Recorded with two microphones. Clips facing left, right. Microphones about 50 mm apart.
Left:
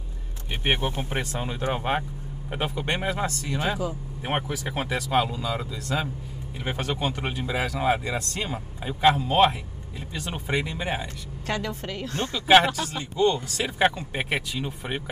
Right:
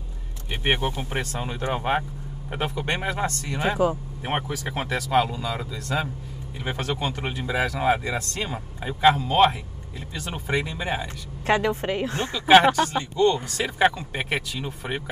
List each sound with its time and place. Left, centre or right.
1.1 s speech: centre
3.5 s speech: right
4.2 s speech: centre
11.4 s speech: right
12.4 s speech: centre